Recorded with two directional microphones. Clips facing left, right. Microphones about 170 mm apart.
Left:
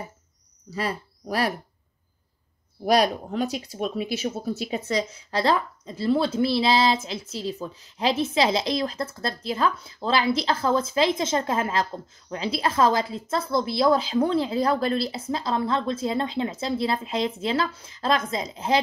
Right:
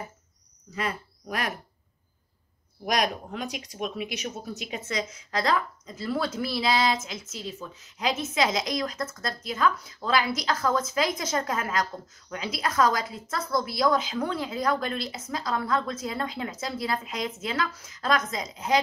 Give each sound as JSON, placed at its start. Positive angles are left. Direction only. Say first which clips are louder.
{"t": 0.7, "sound": "speech", "louder": "left 3 dB", "side_deg": 35}
{"t": 2.8, "sound": "speech", "louder": "left 6 dB", "side_deg": 35}